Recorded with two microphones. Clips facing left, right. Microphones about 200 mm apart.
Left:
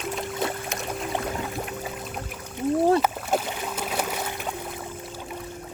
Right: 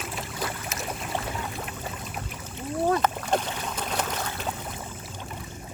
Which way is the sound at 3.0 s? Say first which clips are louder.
Left 1 dB; 5° left (ahead or behind).